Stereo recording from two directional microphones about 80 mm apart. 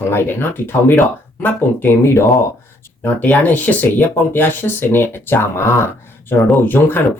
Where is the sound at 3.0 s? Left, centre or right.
Left.